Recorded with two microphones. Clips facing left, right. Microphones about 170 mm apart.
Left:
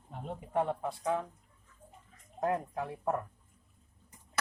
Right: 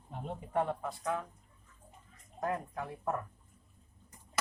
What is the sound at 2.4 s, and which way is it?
Speech, 25° left (ahead or behind).